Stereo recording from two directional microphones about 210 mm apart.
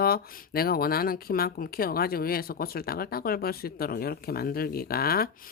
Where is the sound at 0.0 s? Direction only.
45° left (ahead or behind).